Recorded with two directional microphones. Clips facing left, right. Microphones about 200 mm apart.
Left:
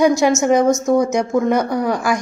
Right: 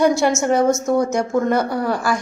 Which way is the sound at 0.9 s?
15° left (ahead or behind).